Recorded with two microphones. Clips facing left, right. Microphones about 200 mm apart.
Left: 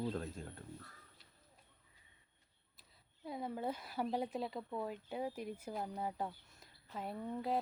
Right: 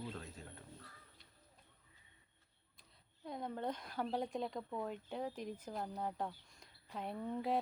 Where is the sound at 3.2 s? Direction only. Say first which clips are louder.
Left 1 dB; 5° left (ahead or behind).